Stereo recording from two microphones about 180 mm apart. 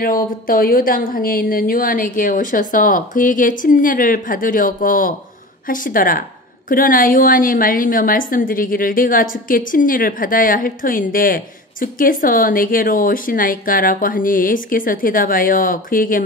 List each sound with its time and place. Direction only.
0.0 s a woman's voice: 50° left (ahead or behind)